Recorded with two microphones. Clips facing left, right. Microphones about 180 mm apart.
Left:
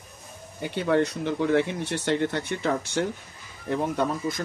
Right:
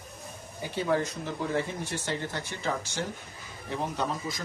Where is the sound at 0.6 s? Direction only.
65° left (ahead or behind).